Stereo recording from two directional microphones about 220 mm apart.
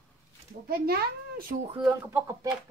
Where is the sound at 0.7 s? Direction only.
45° right (ahead or behind).